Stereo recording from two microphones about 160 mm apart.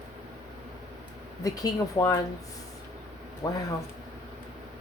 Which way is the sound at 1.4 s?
20° left (ahead or behind).